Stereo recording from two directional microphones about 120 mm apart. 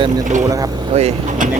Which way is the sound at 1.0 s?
65° right (ahead or behind).